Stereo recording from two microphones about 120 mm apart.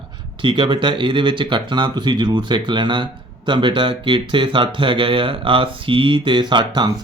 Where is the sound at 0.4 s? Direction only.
40° right (ahead or behind).